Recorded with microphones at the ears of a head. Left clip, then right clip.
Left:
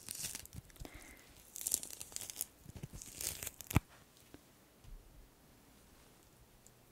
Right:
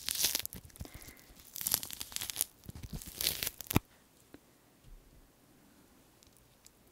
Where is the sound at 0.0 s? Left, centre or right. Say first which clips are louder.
Right 13 dB; right.